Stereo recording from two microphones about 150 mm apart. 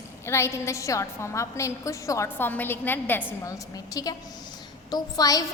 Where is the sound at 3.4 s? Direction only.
25° left (ahead or behind).